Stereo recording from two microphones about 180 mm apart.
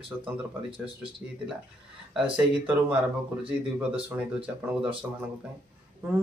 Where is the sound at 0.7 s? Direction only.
30° right (ahead or behind).